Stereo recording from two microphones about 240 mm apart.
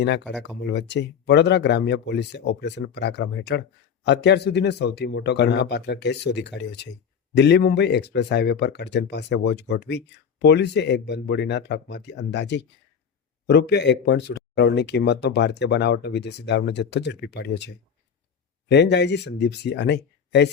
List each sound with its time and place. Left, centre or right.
0.4 s speech: left
18.7 s speech: left